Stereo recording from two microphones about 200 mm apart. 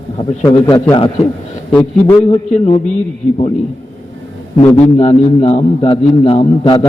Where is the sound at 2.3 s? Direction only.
30° left (ahead or behind).